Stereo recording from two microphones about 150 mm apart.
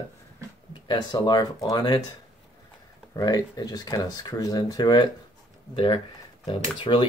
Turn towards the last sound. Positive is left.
turn(degrees=35)  # may be behind; listen again after turning